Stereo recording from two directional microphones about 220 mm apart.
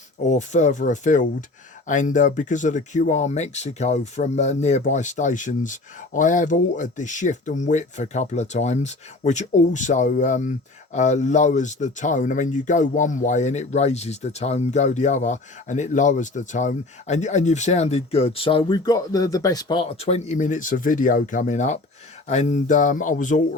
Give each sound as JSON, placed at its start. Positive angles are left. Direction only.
{"t": 0.3, "sound": "speech", "side_deg": 30}